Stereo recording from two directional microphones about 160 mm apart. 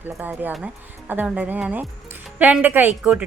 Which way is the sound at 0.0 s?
10° right (ahead or behind).